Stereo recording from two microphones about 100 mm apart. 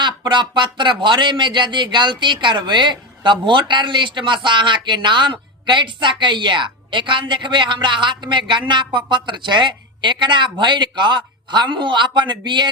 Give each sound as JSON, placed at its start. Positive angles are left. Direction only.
{"t": 0.0, "sound": "speech", "side_deg": -50}